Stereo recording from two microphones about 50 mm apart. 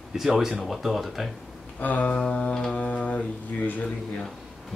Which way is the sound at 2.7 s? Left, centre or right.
Left.